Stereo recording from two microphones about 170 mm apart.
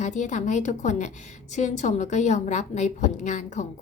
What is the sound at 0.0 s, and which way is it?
A woman's voice, 45° left (ahead or behind).